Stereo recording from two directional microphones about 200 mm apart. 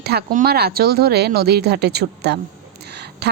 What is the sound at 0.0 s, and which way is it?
A woman's voice, 50° right (ahead or behind).